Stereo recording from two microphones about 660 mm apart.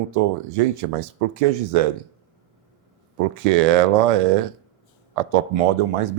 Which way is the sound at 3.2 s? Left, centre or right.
Right.